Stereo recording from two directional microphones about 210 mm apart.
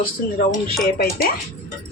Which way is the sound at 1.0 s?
50° left (ahead or behind).